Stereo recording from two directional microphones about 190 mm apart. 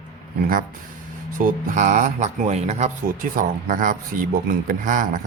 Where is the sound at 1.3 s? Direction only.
40° right (ahead or behind).